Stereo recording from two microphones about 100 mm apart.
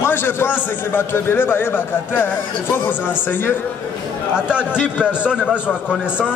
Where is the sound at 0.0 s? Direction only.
20° left (ahead or behind).